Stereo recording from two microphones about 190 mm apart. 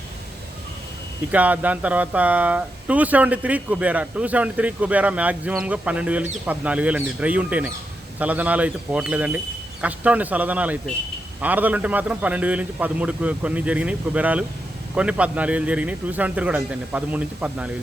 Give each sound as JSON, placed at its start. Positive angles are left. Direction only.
{"t": 1.3, "sound": "speech", "side_deg": -10}